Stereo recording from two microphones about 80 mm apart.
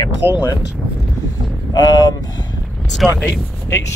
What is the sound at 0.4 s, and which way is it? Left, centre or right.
Speech, left.